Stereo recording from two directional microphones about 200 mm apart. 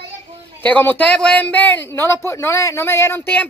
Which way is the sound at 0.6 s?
10° left (ahead or behind).